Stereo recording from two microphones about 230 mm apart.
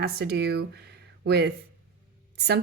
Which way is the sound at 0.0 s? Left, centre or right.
Right.